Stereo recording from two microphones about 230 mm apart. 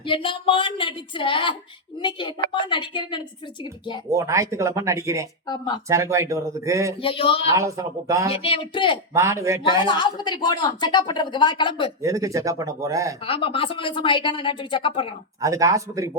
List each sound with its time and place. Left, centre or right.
0.0 s a woman's voice: left
4.1 s speech: centre
5.5 s speech: centre
5.9 s speech: centre
7.0 s a woman's voice: left
7.5 s speech: centre
8.3 s a woman's voice: left
9.1 s speech: centre
9.8 s a woman's voice: centre
12.0 s speech: centre
13.2 s a woman's voice: left
15.4 s speech: centre